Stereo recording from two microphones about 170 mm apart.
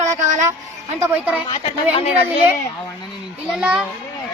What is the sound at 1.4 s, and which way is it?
Speech, 25° left (ahead or behind).